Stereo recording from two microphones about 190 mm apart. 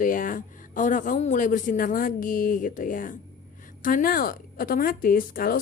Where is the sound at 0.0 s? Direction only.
45° left (ahead or behind).